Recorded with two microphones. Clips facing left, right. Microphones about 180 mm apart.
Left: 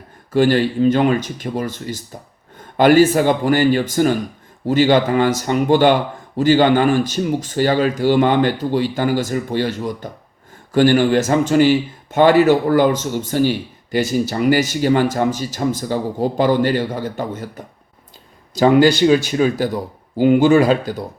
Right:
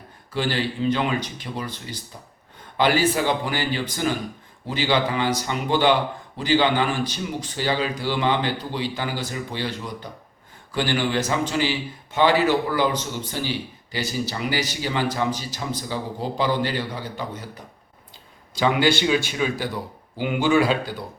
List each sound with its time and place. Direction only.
0.3 s speech: 45° left (ahead or behind)
18.5 s speech: 45° left (ahead or behind)